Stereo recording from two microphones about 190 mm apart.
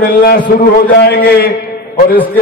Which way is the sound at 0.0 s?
50° left (ahead or behind).